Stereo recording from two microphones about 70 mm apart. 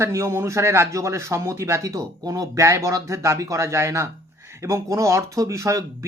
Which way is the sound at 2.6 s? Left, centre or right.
Right.